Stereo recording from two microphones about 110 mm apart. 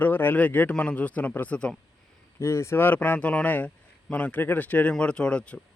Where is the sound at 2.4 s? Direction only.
25° left (ahead or behind).